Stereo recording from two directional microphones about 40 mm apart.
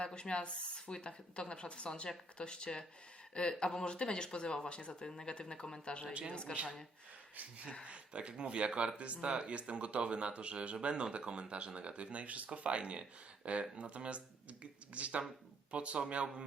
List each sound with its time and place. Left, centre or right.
0.0 s speech: left
7.9 s speech: right